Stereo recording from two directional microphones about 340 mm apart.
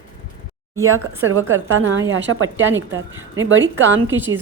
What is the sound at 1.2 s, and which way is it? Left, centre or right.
A woman's voice, right.